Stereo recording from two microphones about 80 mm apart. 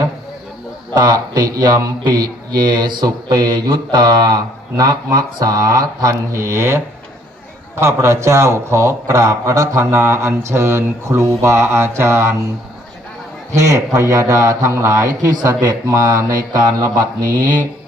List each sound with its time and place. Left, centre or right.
0.9 s a man's voice: right
8.0 s speech: right
13.5 s a man's voice: right